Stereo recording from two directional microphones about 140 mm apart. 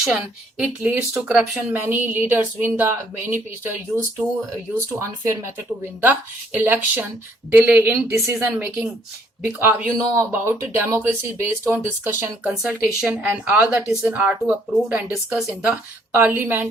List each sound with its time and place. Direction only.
0.0 s speech: 5° right (ahead or behind)
12.5 s speech: 5° right (ahead or behind)